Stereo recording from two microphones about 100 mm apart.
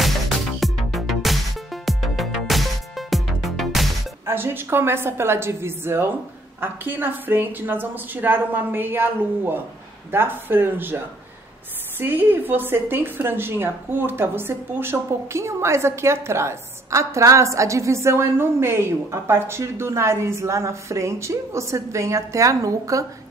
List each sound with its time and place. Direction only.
0.6 s music: centre (ahead or behind)
4.3 s a woman's voice: 20° right (ahead or behind)
12.0 s a woman's voice: 20° right (ahead or behind)